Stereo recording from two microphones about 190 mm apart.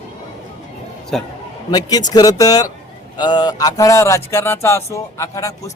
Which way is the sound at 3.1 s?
20° left (ahead or behind).